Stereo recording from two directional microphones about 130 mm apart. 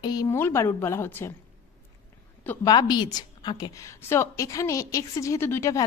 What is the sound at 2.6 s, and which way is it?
A woman's voice, 35° left (ahead or behind).